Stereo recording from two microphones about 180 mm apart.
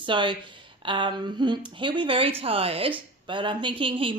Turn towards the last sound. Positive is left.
turn(degrees=-30)  # may be behind; listen again after turning